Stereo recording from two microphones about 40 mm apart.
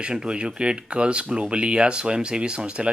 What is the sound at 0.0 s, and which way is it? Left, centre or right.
Speech, right.